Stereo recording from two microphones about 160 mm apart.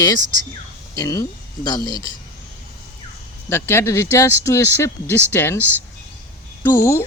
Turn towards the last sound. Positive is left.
turn(degrees=15)  # may be behind; listen again after turning